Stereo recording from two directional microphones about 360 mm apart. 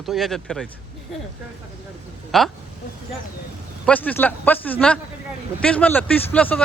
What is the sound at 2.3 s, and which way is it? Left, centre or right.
Speech, centre.